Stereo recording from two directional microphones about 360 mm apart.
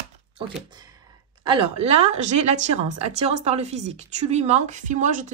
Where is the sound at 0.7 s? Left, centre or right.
Centre.